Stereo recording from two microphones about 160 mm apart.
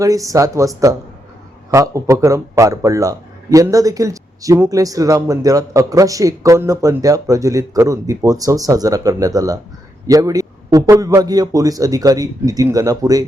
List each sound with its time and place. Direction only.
0.0 s a man's voice: 20° right (ahead or behind)